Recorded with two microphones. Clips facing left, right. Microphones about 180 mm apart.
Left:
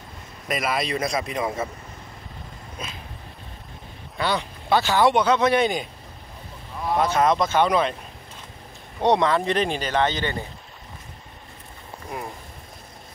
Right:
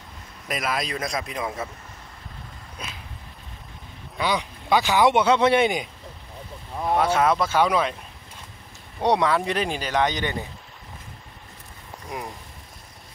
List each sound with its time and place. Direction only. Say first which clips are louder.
0.5 s a man's voice: left 3 dB; centre (ahead or behind)
4.2 s a man's voice: even; 15° right (ahead or behind)
7.0 s a man's voice: left 1 dB; 10° right (ahead or behind)
9.0 s a man's voice: left 1 dB; 10° right (ahead or behind)